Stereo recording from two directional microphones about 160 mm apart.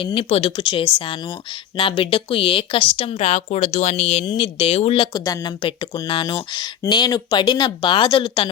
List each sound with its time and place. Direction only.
0.0 s speech: 35° left (ahead or behind)
5.1 s speech: 25° left (ahead or behind)